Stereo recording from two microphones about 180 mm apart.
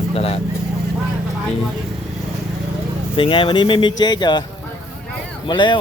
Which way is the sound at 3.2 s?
30° left (ahead or behind).